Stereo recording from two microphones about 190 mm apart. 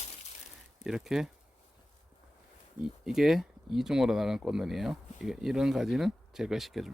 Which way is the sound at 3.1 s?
Centre (ahead or behind).